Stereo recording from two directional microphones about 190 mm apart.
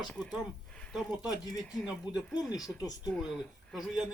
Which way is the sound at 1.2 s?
20° left (ahead or behind).